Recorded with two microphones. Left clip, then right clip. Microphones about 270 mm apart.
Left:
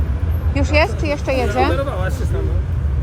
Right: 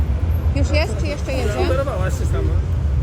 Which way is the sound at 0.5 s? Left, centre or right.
Centre.